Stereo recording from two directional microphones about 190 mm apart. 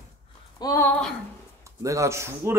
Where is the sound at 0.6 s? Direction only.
20° left (ahead or behind).